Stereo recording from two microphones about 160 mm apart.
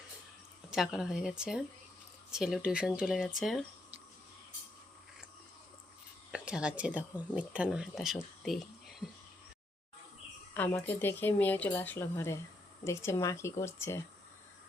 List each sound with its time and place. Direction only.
0.7 s speech: 5° right (ahead or behind)
6.3 s speech: 5° right (ahead or behind)
10.5 s a woman's voice: 15° left (ahead or behind)